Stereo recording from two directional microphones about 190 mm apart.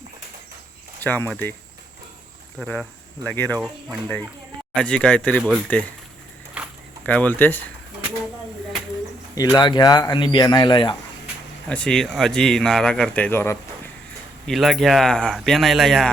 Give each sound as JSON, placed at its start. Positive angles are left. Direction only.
{"t": 1.0, "sound": "speech", "side_deg": 10}
{"t": 2.6, "sound": "speech", "side_deg": 0}
{"t": 4.7, "sound": "speech", "side_deg": 5}
{"t": 6.6, "sound": "a sound", "side_deg": -5}
{"t": 7.0, "sound": "speech", "side_deg": 10}
{"t": 9.3, "sound": "speech", "side_deg": 20}
{"t": 11.7, "sound": "speech", "side_deg": 5}
{"t": 14.4, "sound": "speech", "side_deg": 0}